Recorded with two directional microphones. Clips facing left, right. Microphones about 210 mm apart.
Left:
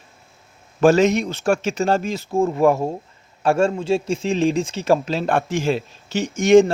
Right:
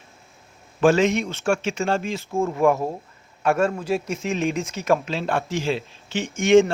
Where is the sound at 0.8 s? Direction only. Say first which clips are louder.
Left 3 dB; 40° left (ahead or behind).